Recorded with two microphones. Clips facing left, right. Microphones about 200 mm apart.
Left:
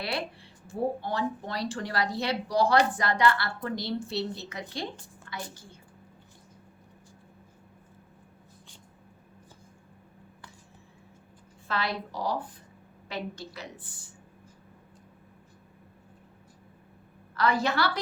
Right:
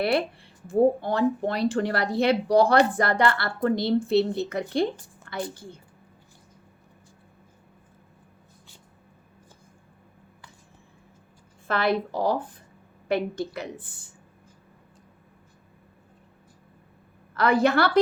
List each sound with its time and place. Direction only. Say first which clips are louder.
0.7 s speech: right 9 dB; 55° right (ahead or behind)
11.7 s a woman's voice: right 8 dB; 55° right (ahead or behind)
17.3 s speech: right 6 dB; 55° right (ahead or behind)